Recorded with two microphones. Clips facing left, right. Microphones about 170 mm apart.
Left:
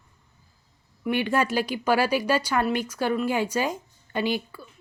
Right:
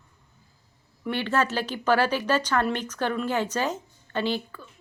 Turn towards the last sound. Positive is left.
turn(degrees=10)  # may be behind; listen again after turning